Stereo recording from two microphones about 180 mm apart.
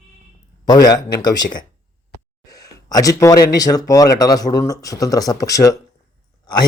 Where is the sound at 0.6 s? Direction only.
20° left (ahead or behind).